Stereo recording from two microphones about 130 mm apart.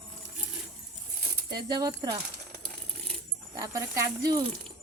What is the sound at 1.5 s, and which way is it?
Speech, 30° right (ahead or behind).